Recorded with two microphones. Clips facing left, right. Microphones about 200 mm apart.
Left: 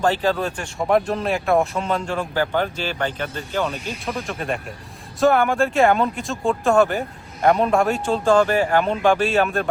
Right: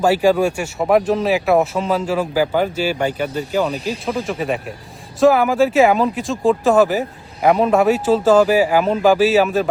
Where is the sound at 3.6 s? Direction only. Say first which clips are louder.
Right 5 dB; 35° right (ahead or behind).